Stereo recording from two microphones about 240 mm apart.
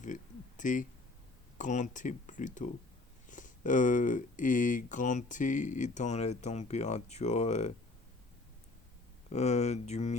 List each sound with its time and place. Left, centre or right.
0.0 s a sound: left
1.5 s speech: left
9.3 s speech: left